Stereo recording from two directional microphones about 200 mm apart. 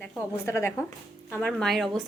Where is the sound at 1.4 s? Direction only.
Centre (ahead or behind).